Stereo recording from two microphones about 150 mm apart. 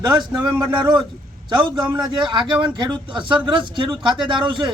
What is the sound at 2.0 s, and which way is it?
A man's voice, 30° right (ahead or behind).